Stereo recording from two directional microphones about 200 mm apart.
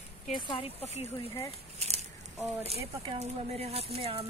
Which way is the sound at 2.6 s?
30° right (ahead or behind).